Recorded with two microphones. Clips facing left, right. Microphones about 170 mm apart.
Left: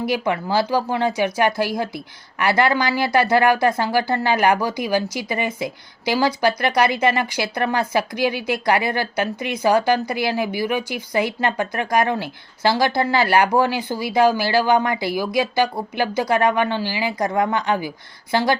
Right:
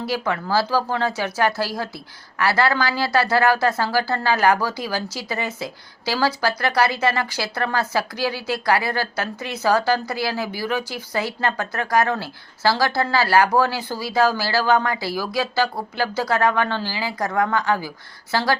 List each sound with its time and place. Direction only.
0.0 s speech: 20° left (ahead or behind)